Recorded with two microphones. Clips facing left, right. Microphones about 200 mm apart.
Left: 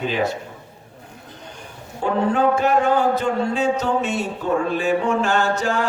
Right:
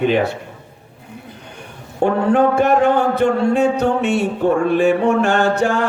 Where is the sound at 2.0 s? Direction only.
65° right (ahead or behind).